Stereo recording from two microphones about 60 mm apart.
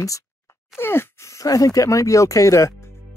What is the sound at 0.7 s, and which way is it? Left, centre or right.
Speech, left.